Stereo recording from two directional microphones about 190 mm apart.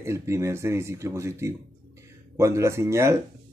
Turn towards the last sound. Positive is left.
turn(degrees=-15)  # may be behind; listen again after turning